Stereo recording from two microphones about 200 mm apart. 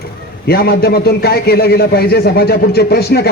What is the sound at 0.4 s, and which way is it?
A man's voice, 50° left (ahead or behind).